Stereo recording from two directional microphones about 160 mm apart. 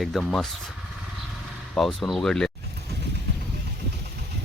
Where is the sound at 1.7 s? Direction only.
Centre (ahead or behind).